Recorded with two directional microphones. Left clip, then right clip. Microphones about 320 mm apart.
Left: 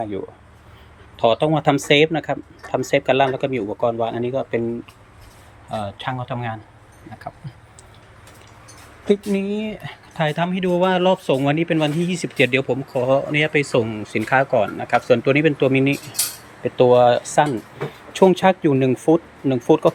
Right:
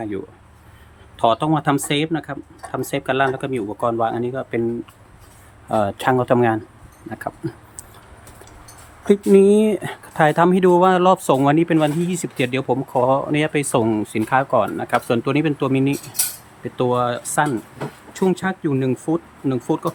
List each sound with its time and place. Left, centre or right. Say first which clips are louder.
1.2 s speech: left 1 dB; centre
5.7 s speech: right 8 dB; centre
7.2 s a sound: right 7 dB; centre
9.0 s speech: right 8 dB; centre